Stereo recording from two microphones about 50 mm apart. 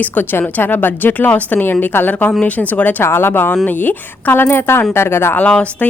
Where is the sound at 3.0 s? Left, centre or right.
Left.